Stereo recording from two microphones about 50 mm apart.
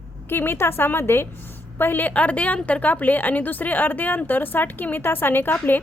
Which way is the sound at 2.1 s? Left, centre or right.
Left.